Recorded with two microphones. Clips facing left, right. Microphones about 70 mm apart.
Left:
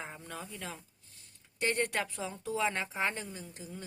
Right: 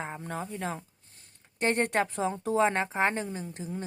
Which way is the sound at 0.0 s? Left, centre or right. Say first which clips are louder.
Right 7 dB; right.